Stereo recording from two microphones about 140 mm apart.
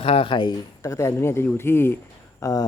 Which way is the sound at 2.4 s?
25° left (ahead or behind).